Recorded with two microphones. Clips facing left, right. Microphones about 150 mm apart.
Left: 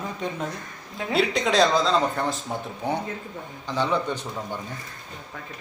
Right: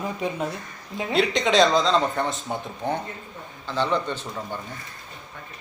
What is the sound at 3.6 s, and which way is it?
Speech, 15° left (ahead or behind).